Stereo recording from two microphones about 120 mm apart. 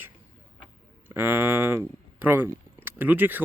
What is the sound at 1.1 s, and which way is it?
Speech, 20° right (ahead or behind).